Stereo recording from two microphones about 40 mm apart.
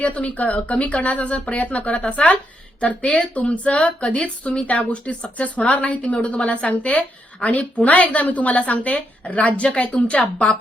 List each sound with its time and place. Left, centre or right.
0.0 s speech: left